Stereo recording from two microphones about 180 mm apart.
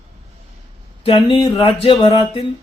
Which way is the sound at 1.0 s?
30° left (ahead or behind).